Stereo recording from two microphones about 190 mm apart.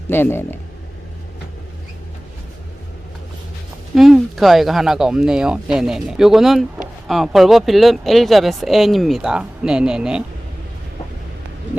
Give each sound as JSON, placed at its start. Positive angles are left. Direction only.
{"t": 0.1, "sound": "speech", "side_deg": 10}
{"t": 3.9, "sound": "speech", "side_deg": 0}